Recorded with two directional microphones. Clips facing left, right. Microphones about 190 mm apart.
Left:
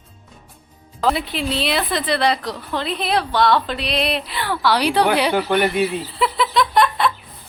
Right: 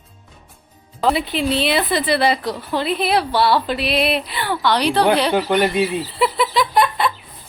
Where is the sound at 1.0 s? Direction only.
Centre (ahead or behind).